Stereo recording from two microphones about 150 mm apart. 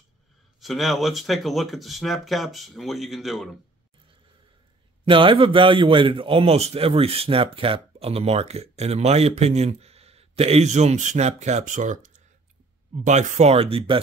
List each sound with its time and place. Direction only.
0.6 s speech: centre (ahead or behind)
5.0 s a man's voice: 35° right (ahead or behind)